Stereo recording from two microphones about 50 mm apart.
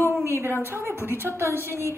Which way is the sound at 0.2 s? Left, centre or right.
Right.